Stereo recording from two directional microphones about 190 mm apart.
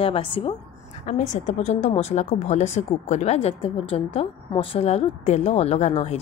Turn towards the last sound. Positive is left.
turn(degrees=35)  # may be behind; listen again after turning